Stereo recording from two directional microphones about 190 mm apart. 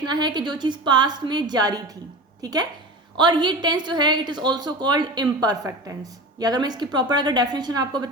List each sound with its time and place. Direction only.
0.0 s a woman's voice: 20° right (ahead or behind)